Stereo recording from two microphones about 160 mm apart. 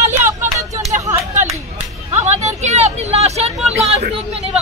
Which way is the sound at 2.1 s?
45° right (ahead or behind).